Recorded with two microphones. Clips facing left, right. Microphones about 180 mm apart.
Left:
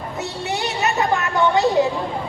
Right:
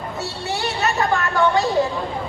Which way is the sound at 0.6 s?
20° left (ahead or behind).